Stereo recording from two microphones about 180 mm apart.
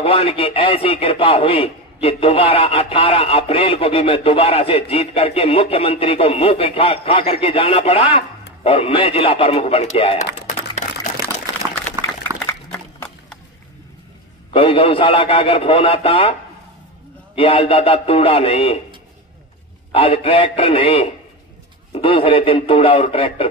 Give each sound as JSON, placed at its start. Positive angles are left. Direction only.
{"t": 0.0, "sound": "a man's voice", "side_deg": 35}
{"t": 12.3, "sound": "a sound", "side_deg": -15}
{"t": 14.5, "sound": "a man's voice", "side_deg": 30}
{"t": 17.4, "sound": "a man's voice", "side_deg": 30}
{"t": 19.9, "sound": "a man's voice", "side_deg": 30}